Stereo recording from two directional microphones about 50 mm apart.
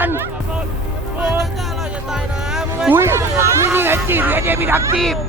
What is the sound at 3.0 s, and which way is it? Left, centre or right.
Vehicle, right.